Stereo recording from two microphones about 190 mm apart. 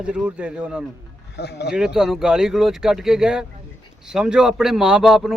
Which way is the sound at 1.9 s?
Centre (ahead or behind).